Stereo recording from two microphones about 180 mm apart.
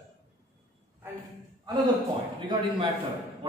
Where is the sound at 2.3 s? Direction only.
30° right (ahead or behind).